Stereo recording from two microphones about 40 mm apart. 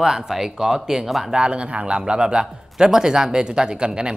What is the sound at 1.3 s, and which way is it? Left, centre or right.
Speech, right.